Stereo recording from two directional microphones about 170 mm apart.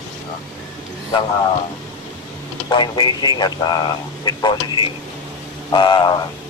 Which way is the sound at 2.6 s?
25° left (ahead or behind).